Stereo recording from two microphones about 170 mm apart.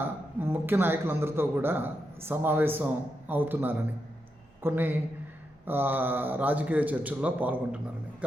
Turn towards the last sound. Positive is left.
turn(degrees=-10)  # may be behind; listen again after turning